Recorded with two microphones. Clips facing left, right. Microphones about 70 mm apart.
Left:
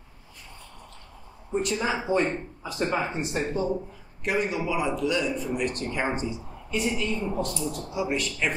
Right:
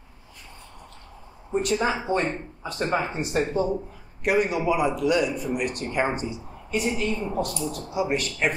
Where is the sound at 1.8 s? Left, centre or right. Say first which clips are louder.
Right 1 dB; centre.